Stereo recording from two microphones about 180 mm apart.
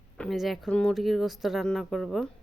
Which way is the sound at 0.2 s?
Centre (ahead or behind).